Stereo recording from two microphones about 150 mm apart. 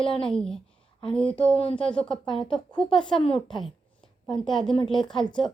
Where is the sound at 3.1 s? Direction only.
35° left (ahead or behind).